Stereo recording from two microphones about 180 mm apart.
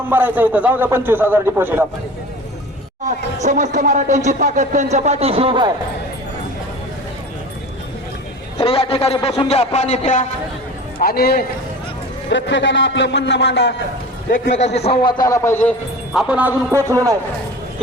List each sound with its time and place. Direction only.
0.1 s a man's voice: 10° right (ahead or behind)
3.0 s speech: 40° right (ahead or behind); by 5.7 s 25° right (ahead or behind)
8.5 s a man's voice: 30° left (ahead or behind)
11.0 s a man's voice: 60° left (ahead or behind)
12.3 s a man's voice: 85° left
14.3 s a man's voice: 50° left (ahead or behind)
14.8 s a man's voice: 35° left (ahead or behind)
15.2 s a man's voice: 15° left (ahead or behind)
16.1 s a man's voice: 5° right (ahead or behind)